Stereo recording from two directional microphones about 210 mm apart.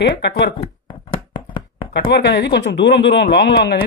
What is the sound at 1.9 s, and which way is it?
Speech, 55° left (ahead or behind).